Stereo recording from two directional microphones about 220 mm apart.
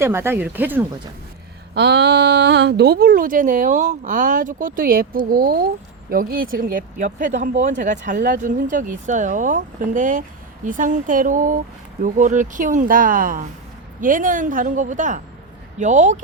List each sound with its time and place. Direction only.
0.0 s speech: 10° right (ahead or behind)
1.7 s speech: 50° right (ahead or behind); by 16.1 s 35° right (ahead or behind)